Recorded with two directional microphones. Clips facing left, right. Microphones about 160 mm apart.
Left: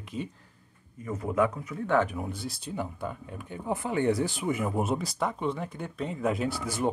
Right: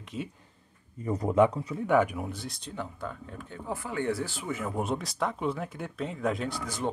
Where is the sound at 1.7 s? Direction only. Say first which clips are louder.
Right 1 dB; 10° right (ahead or behind).